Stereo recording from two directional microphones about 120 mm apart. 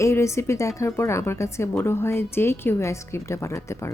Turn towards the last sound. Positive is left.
turn(degrees=25)  # may be behind; listen again after turning